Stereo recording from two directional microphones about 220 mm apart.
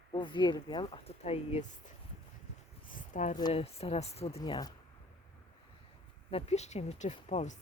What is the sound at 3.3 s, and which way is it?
Speech, 25° left (ahead or behind).